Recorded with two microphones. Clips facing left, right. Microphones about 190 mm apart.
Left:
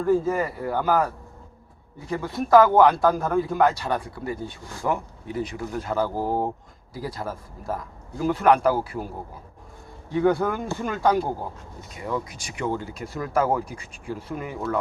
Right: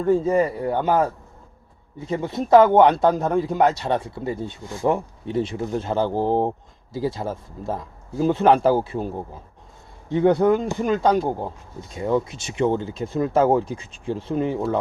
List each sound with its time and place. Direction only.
0.0 s speech: 25° right (ahead or behind)